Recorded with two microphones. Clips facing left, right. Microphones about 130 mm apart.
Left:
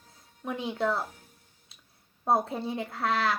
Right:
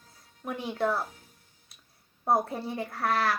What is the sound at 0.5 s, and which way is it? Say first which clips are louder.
Speech: even; 20° left (ahead or behind).